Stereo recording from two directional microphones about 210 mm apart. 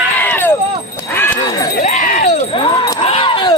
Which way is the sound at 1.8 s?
35° left (ahead or behind).